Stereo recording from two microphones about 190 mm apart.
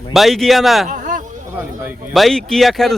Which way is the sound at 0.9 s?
45° right (ahead or behind).